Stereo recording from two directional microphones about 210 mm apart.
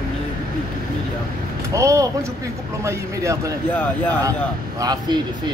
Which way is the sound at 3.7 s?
5° left (ahead or behind).